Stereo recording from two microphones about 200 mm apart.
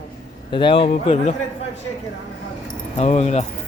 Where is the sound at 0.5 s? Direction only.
25° left (ahead or behind).